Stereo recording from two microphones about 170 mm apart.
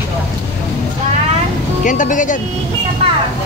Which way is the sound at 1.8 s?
50° left (ahead or behind).